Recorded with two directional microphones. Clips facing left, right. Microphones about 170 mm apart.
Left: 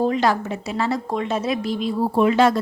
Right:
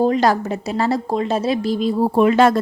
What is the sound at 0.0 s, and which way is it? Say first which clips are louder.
A woman's voice: right 3 dB; 40° right (ahead or behind).